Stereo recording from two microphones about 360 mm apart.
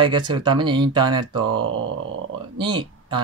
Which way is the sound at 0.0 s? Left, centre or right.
Centre.